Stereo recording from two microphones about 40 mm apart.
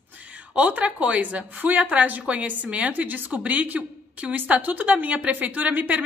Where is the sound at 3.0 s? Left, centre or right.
Right.